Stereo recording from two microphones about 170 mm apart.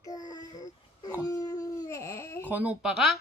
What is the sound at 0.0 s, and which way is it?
Dog, 20° left (ahead or behind).